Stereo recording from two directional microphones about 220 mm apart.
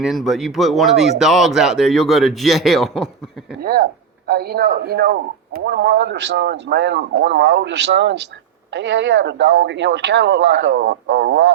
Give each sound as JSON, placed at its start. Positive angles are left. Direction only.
{"t": 0.0, "sound": "speech", "side_deg": 0}
{"t": 3.6, "sound": "speech", "side_deg": -40}